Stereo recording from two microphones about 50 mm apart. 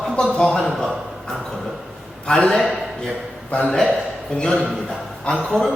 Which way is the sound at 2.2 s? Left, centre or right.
Centre.